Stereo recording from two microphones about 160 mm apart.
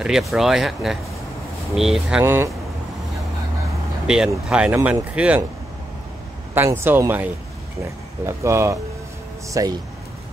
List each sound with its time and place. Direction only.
0.0 s speech: centre (ahead or behind)
4.1 s speech: 5° right (ahead or behind)
6.5 s speech: 15° right (ahead or behind)